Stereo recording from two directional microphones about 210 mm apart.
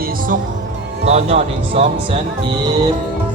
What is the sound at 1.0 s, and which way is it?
Speech, 30° right (ahead or behind).